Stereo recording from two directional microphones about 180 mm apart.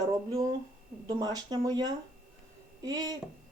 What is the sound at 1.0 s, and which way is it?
Speech, 20° right (ahead or behind).